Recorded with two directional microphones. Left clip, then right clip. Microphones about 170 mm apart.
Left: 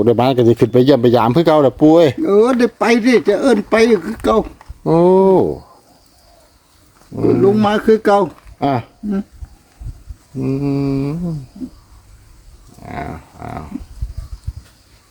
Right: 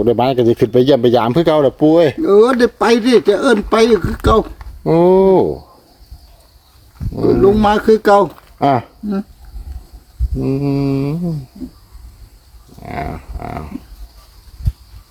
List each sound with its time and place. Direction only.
0.0 s a man's voice: 25° left (ahead or behind)
2.2 s speech: centre (ahead or behind)
4.8 s a man's voice: 20° left (ahead or behind)
7.2 s speech: centre (ahead or behind)
8.5 s speech: 15° right (ahead or behind)
10.4 s mantra: 25° right (ahead or behind)
12.8 s a sound: 30° right (ahead or behind)